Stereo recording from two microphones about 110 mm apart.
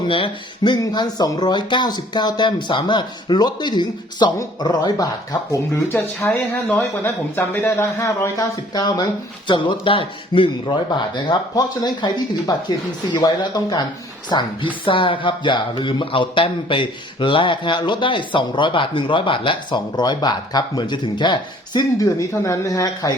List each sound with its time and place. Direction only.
0.1 s a man's voice: 50° left (ahead or behind)
5.9 s speech: 20° left (ahead or behind)
9.5 s a man's voice: 45° left (ahead or behind)